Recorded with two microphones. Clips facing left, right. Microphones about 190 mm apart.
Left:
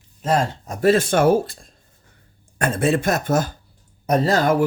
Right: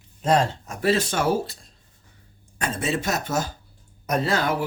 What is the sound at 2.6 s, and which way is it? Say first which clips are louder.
Speech: left 7 dB; 55° left (ahead or behind).